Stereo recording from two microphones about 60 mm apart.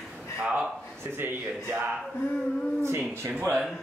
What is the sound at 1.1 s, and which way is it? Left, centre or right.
Speech, right.